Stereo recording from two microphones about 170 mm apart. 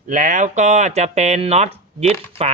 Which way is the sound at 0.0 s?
50° right (ahead or behind).